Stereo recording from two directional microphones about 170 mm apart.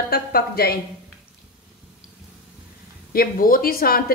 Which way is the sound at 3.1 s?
60° left (ahead or behind).